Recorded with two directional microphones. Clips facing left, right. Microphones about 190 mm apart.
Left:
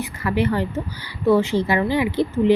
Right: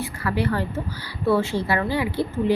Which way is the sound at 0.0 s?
20° left (ahead or behind).